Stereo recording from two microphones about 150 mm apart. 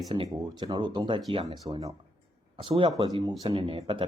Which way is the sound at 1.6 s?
20° right (ahead or behind).